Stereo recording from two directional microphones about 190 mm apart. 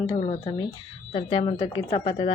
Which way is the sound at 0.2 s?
35° left (ahead or behind).